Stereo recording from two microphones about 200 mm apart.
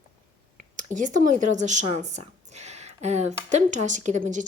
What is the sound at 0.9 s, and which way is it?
Speech, 40° right (ahead or behind).